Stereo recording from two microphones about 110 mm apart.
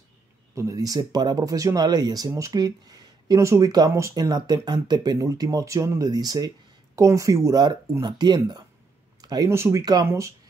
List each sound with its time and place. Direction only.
0.6 s speech: 30° right (ahead or behind)
9.2 s a sound: 35° right (ahead or behind)
9.5 s speech: 25° right (ahead or behind)